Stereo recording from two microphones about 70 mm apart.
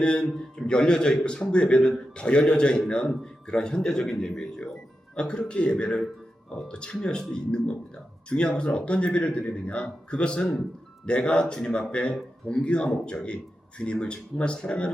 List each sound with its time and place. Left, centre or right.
0.0 s speech: centre